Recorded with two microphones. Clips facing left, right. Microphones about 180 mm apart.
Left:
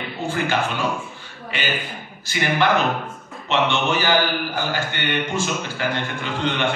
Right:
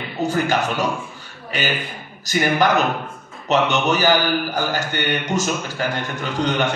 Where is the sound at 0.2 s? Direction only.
40° right (ahead or behind).